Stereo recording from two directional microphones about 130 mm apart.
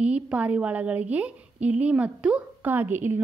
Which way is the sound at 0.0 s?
10° right (ahead or behind).